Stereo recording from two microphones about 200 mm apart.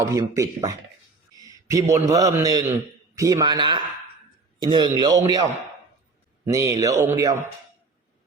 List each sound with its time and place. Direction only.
0.0 s a man's voice: 15° right (ahead or behind)
6.4 s a man's voice: 15° right (ahead or behind)